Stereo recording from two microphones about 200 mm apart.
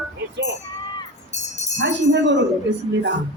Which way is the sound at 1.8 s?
65° right (ahead or behind).